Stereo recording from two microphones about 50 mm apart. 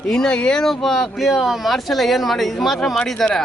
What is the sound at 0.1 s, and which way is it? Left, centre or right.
Speech, centre.